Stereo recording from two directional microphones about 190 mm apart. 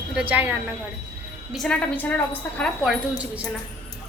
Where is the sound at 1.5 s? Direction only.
5° left (ahead or behind).